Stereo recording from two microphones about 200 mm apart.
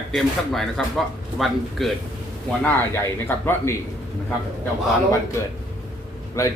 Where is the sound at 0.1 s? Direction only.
Centre (ahead or behind).